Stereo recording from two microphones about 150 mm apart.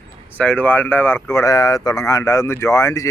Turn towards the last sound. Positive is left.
turn(degrees=20)  # may be behind; listen again after turning